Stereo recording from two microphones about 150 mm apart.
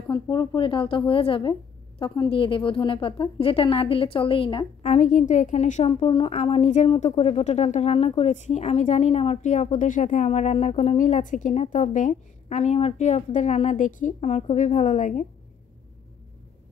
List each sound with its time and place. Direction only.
0.1 s a woman's voice: 25° left (ahead or behind)
4.8 s a woman's voice: 50° left (ahead or behind)
5.9 s a woman's voice: 35° left (ahead or behind); by 15.2 s 55° left (ahead or behind)